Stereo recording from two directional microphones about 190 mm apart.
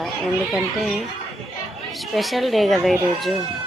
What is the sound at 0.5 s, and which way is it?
Speech, centre (ahead or behind).